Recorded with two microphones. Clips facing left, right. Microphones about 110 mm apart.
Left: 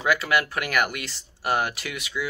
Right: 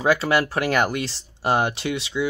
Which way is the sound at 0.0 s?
30° right (ahead or behind).